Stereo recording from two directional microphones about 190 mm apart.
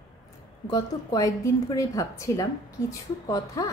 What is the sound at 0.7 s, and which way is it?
A woman's voice, 20° left (ahead or behind).